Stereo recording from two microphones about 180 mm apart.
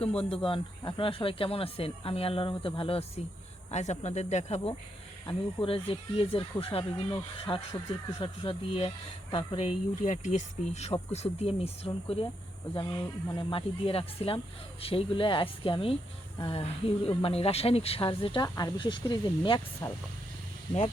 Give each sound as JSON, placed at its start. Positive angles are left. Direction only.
{"t": 0.3, "sound": "speech", "side_deg": 30}
{"t": 7.1, "sound": "speech", "side_deg": 20}
{"t": 8.2, "sound": "speech", "side_deg": 30}
{"t": 18.4, "sound": "speech", "side_deg": 20}